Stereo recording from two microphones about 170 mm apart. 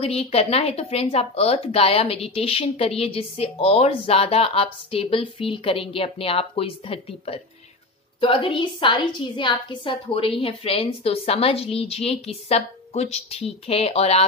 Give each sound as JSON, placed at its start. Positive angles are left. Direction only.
{"t": 0.0, "sound": "speech", "side_deg": 35}